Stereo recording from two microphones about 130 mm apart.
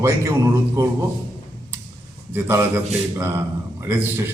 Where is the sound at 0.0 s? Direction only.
20° right (ahead or behind).